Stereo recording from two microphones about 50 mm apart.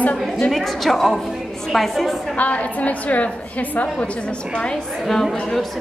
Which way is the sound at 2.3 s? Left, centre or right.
Left.